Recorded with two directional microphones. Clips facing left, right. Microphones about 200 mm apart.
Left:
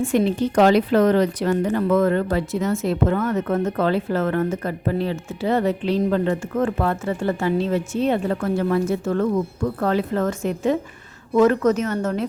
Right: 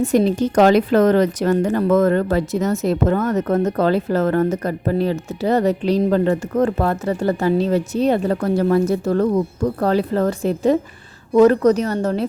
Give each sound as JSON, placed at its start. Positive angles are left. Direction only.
{"t": 0.0, "sound": "speech", "side_deg": -40}